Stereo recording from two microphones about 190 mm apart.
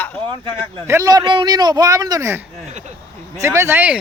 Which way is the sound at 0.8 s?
15° right (ahead or behind).